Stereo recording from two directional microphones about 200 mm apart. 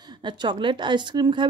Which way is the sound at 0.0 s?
20° right (ahead or behind).